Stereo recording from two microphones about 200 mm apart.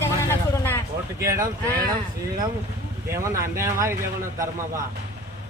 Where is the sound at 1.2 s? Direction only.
15° right (ahead or behind).